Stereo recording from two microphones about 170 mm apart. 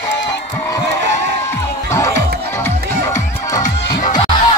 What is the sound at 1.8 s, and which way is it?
Music, 15° left (ahead or behind).